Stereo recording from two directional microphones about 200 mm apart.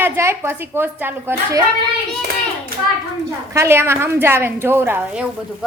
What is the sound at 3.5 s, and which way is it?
A woman's voice, 15° right (ahead or behind).